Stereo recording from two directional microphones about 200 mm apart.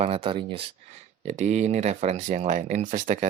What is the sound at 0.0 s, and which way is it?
Speech, 30° right (ahead or behind).